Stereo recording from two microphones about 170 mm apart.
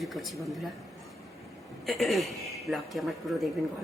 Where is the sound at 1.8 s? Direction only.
Centre (ahead or behind).